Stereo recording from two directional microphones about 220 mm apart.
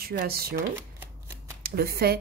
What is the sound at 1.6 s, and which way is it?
Speech, 45° right (ahead or behind).